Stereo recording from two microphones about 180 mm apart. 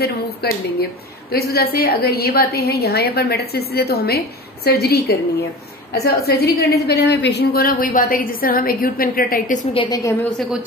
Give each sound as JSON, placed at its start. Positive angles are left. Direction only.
{"t": 0.0, "sound": "a woman's voice", "side_deg": 60}
{"t": 9.8, "sound": "a woman's voice", "side_deg": 20}